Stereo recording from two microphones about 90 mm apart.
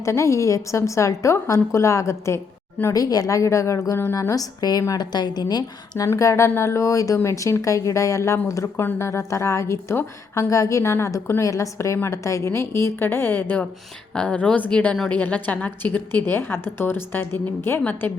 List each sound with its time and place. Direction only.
0.0 s a woman's voice: 35° left (ahead or behind); by 6.1 s 50° left (ahead or behind)
6.1 s a woman's voice: 35° left (ahead or behind)
14.1 s a woman's voice: 10° left (ahead or behind)